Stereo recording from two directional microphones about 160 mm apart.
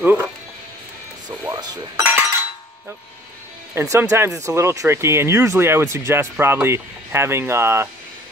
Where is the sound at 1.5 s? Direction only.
25° right (ahead or behind).